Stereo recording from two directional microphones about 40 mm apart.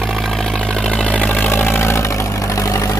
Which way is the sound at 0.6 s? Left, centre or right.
Left.